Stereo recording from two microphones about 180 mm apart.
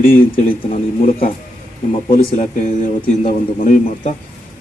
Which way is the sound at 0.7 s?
50° left (ahead or behind).